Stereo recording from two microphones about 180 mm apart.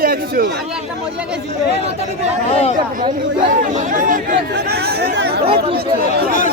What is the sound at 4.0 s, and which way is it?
Speech, 50° right (ahead or behind).